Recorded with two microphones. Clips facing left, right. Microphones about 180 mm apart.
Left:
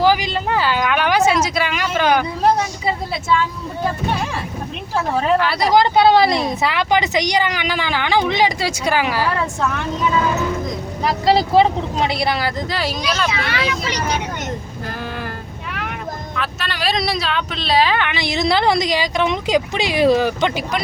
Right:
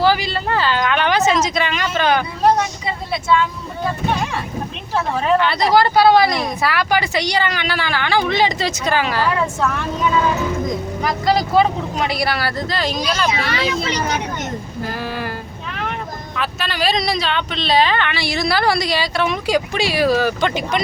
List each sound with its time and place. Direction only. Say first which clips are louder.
0.0 s a sound: left 1 dB; 15° left (ahead or behind)
5.4 s speech: even; 5° left (ahead or behind)
11.0 s speech: left 3 dB; 25° left (ahead or behind); by 13.2 s 5° left (ahead or behind)
14.8 s a sound: right 2 dB; 5° right (ahead or behind)
16.3 s speech: right 4 dB; centre (ahead or behind); by 20.5 s 20° left (ahead or behind)
20.5 s speech: right 2 dB; 5° left (ahead or behind)